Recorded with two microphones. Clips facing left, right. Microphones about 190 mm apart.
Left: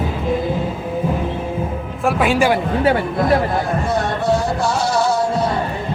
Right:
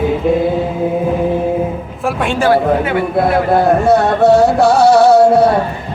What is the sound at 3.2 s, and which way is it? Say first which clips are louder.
Speech: right 5 dB; 65° right (ahead or behind).